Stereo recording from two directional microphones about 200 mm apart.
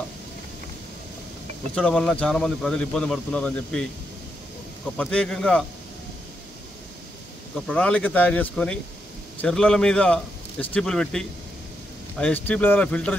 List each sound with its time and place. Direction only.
1.8 s speech: 5° left (ahead or behind)
4.9 s speech: 5° left (ahead or behind)
7.5 s speech: 5° left (ahead or behind)